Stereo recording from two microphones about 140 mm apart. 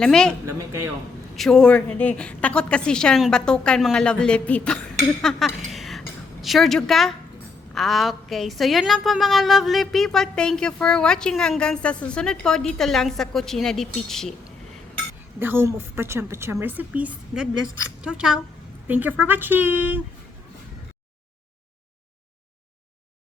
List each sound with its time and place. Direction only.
0.0 s a woman's voice: 5° left (ahead or behind)
0.4 s a woman's voice: 20° right (ahead or behind)
1.4 s a woman's voice: 5° left (ahead or behind)
15.4 s a woman's voice: 15° right (ahead or behind)